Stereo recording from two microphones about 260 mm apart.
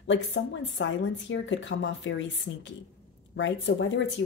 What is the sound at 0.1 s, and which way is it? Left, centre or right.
Speech, left.